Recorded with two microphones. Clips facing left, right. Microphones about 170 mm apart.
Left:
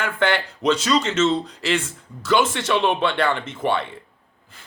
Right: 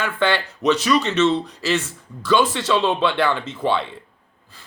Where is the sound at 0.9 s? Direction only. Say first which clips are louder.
Right 1 dB; 25° left (ahead or behind).